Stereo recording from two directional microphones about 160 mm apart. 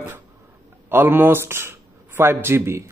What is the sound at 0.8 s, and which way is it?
Speech, 15° right (ahead or behind).